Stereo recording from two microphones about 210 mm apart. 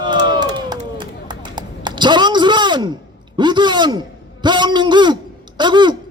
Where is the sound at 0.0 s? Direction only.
20° right (ahead or behind).